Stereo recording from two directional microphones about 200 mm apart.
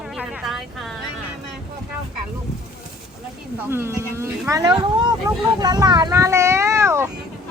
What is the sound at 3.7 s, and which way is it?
Speech, 15° right (ahead or behind).